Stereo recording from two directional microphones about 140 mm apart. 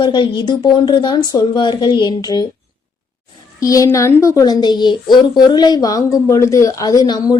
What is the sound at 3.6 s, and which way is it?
A woman's voice, 25° left (ahead or behind).